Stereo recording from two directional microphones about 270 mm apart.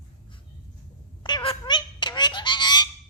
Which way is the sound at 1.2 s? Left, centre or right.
Centre.